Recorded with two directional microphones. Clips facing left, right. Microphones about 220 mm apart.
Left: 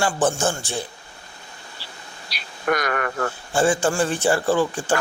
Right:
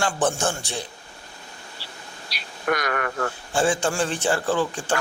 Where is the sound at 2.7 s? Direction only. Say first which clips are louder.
Left 2 dB; 45° left (ahead or behind).